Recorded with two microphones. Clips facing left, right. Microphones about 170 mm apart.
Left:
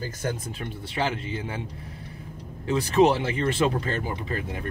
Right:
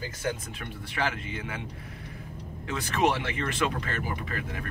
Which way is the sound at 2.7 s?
30° left (ahead or behind).